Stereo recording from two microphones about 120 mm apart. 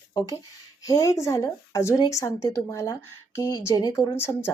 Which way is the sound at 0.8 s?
30° left (ahead or behind).